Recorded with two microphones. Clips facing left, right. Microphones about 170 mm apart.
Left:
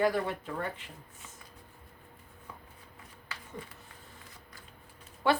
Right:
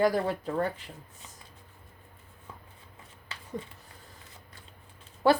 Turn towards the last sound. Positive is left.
turn(degrees=-40)  # may be behind; listen again after turning